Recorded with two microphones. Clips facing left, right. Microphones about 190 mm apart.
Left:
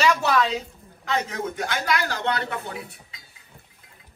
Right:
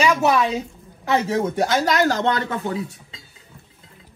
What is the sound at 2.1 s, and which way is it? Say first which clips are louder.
Speech: right 6 dB; 45° right (ahead or behind).